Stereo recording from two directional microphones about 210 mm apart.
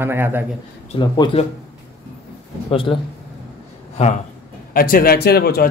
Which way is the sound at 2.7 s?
25° left (ahead or behind).